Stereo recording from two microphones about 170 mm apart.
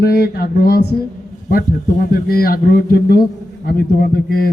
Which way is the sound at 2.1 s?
60° left (ahead or behind).